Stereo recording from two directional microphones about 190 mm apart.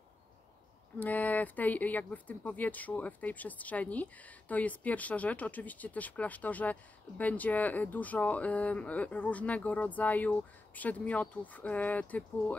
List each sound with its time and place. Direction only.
0.9 s speech: 10° left (ahead or behind)